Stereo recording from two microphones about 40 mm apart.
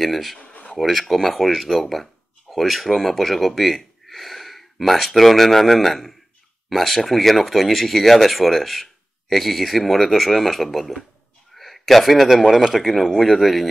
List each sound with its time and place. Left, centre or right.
0.0 s a man's voice: centre
0.4 s a sound: left
0.7 s a man's voice: centre